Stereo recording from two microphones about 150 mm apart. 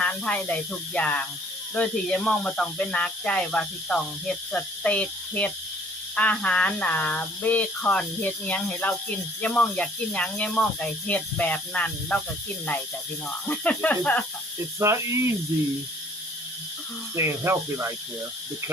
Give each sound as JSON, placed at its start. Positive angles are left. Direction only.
{"t": 0.0, "sound": "speech", "side_deg": 10}
{"t": 13.5, "sound": "speech", "side_deg": 10}
{"t": 14.8, "sound": "speech", "side_deg": -20}
{"t": 17.2, "sound": "speech", "side_deg": -15}